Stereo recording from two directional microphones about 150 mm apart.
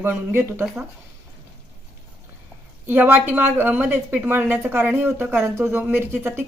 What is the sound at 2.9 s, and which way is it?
Speech, 10° right (ahead or behind).